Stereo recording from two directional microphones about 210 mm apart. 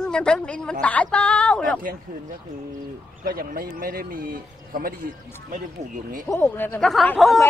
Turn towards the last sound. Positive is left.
turn(degrees=0)  # may be behind; listen again after turning